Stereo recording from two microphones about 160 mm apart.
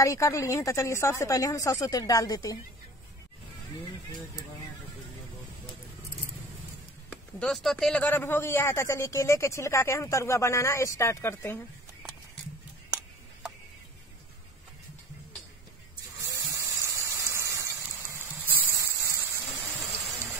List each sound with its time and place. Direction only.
0.0 s speech: 20° left (ahead or behind)
7.1 s a man's voice: 5° left (ahead or behind)
16.2 s a sound: 20° right (ahead or behind)
19.8 s music: centre (ahead or behind)